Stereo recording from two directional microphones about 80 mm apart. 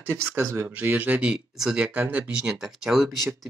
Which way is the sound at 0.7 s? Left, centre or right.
Right.